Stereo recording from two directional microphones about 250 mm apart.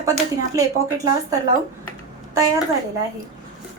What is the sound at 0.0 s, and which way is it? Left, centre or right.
A woman's voice, centre.